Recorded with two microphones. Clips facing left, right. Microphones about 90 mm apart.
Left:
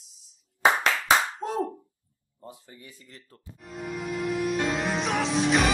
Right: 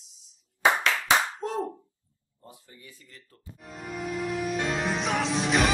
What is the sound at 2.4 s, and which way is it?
Speech, 25° left (ahead or behind).